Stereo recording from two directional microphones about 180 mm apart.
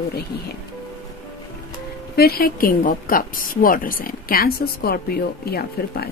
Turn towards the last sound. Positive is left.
turn(degrees=60)  # may be behind; listen again after turning